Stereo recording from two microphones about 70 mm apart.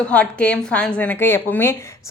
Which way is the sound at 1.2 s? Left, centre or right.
Left.